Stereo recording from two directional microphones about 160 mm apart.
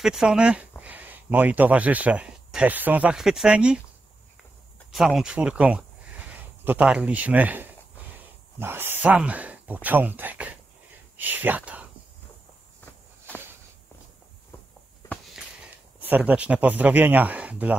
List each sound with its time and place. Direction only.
0.0 s speech: 5° right (ahead or behind)
4.9 s speech: centre (ahead or behind)
15.0 s a sound: centre (ahead or behind)
16.0 s speech: 10° right (ahead or behind)